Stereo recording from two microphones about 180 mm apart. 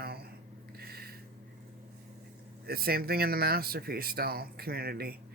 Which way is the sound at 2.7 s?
55° right (ahead or behind).